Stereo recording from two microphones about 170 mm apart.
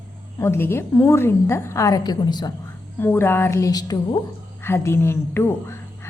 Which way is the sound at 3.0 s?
15° left (ahead or behind).